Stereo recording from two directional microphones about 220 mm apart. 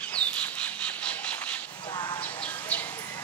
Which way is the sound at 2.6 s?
10° left (ahead or behind).